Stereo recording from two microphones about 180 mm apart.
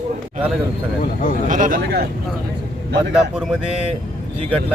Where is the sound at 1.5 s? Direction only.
50° right (ahead or behind).